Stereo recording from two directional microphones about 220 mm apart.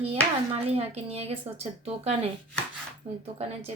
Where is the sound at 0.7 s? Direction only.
30° right (ahead or behind).